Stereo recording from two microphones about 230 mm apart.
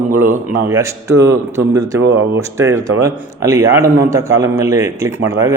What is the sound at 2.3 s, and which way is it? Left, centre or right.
A man's voice, centre.